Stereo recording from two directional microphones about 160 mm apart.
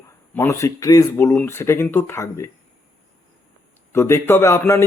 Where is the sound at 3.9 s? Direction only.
15° left (ahead or behind).